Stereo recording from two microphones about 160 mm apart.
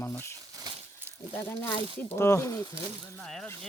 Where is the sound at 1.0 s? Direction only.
15° right (ahead or behind).